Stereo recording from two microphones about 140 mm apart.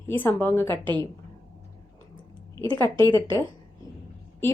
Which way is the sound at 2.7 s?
25° left (ahead or behind).